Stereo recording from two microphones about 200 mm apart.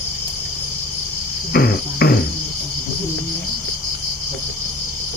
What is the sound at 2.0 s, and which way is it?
Cricket, 50° left (ahead or behind).